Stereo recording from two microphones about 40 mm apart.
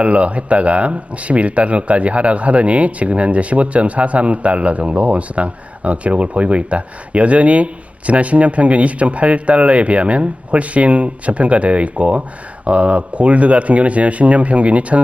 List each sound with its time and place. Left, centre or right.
0.0 s speech: right